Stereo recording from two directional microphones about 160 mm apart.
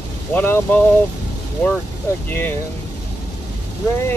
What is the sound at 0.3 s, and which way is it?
Speech, 10° left (ahead or behind).